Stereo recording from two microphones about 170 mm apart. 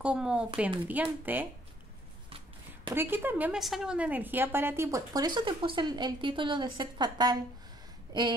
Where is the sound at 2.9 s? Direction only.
10° right (ahead or behind).